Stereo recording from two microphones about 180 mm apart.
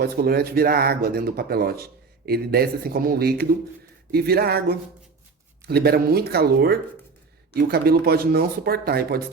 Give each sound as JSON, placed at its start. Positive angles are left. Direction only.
{"t": 0.0, "sound": "speech", "side_deg": -60}